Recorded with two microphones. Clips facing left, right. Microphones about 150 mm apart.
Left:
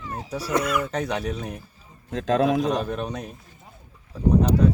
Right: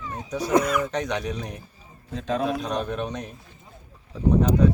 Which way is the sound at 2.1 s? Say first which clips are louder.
Left 5 dB; 90° left.